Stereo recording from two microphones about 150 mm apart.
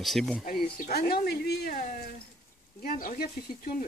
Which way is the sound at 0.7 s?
75° left (ahead or behind).